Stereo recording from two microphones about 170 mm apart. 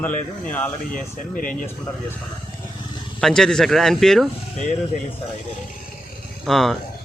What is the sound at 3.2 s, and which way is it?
Speech, 5° left (ahead or behind).